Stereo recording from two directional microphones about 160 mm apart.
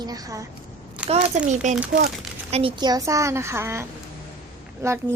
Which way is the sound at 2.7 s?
25° right (ahead or behind).